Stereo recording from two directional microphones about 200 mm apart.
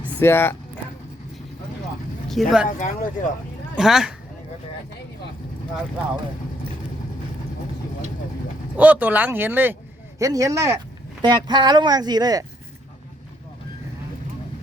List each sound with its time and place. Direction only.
0.2 s speech: 10° left (ahead or behind)
2.3 s speech: centre (ahead or behind)
2.6 s speech: 40° left (ahead or behind)
3.8 s speech: 5° right (ahead or behind)
8.7 s speech: 5° right (ahead or behind)